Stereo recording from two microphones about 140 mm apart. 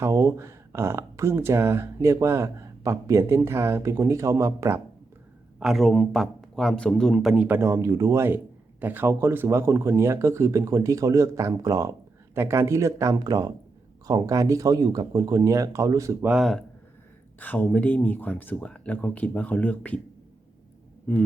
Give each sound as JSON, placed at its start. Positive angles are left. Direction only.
{"t": 0.0, "sound": "speech", "side_deg": -20}
{"t": 5.5, "sound": "a man's voice", "side_deg": 0}
{"t": 7.4, "sound": "speech", "side_deg": -15}
{"t": 16.2, "sound": "a man's voice", "side_deg": -5}
{"t": 17.4, "sound": "speech", "side_deg": 15}
{"t": 21.1, "sound": "speech", "side_deg": 20}